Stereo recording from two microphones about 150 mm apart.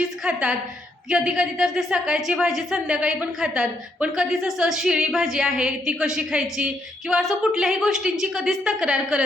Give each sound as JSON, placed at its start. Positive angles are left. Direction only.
{"t": 0.3, "sound": "a woman's voice", "side_deg": -5}